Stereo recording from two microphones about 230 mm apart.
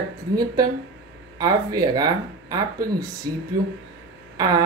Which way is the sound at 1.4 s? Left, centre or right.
Centre.